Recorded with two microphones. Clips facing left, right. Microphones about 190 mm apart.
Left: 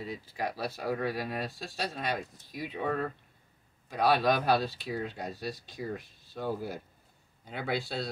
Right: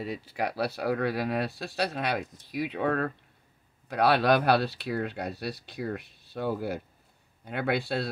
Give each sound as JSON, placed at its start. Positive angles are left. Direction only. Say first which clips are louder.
{"t": 0.0, "sound": "speech", "louder": "right 4 dB", "side_deg": -70}